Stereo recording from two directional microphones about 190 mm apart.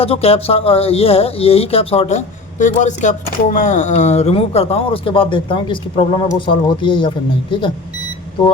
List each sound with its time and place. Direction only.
0.0 s speech: 30° left (ahead or behind)